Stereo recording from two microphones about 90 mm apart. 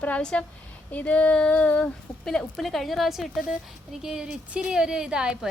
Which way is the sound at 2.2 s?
5° left (ahead or behind).